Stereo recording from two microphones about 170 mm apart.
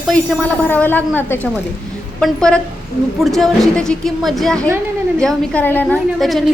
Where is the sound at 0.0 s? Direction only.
5° left (ahead or behind).